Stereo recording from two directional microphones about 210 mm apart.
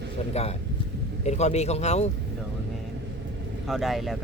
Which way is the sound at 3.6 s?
Centre (ahead or behind).